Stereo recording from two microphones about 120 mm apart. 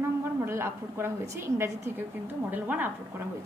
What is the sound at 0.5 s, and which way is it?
A woman's voice, 20° right (ahead or behind).